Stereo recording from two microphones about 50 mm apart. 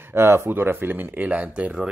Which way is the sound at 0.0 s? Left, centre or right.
Right.